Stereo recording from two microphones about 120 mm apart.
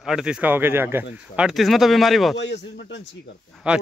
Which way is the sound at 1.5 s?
Centre (ahead or behind).